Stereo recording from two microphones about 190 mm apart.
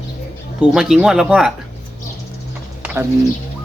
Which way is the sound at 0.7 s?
Centre (ahead or behind).